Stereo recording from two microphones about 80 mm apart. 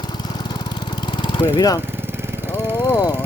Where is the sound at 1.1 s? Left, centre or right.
Left.